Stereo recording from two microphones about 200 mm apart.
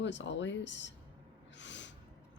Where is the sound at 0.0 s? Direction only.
65° left (ahead or behind).